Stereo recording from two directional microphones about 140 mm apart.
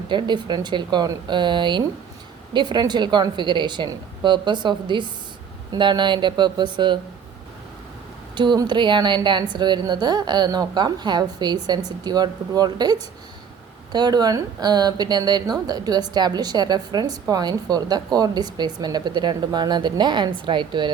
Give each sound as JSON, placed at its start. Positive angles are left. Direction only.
{"t": 0.1, "sound": "a woman's voice", "side_deg": -35}
{"t": 8.4, "sound": "a woman's voice", "side_deg": -30}